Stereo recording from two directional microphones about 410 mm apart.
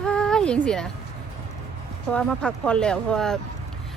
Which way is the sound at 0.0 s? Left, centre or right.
Centre.